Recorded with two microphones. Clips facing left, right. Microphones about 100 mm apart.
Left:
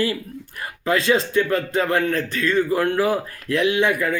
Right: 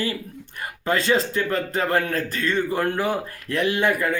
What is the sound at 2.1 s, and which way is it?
Speech, 40° right (ahead or behind).